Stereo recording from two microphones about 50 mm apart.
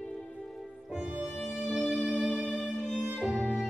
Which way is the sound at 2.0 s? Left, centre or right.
Centre.